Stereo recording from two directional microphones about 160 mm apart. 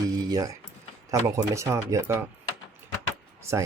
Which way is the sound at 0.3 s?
20° right (ahead or behind).